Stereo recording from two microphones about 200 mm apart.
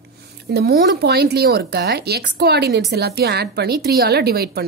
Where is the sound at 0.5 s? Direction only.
55° right (ahead or behind).